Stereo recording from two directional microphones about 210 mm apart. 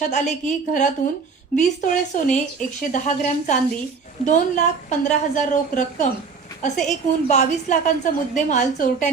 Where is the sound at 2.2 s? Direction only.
35° left (ahead or behind).